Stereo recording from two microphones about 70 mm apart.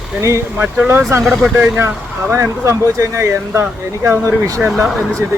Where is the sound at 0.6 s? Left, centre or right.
Right.